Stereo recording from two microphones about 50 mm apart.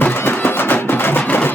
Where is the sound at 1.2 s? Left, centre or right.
Left.